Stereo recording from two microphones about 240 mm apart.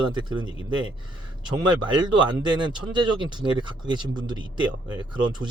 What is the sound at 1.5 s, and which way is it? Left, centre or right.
Speech, centre.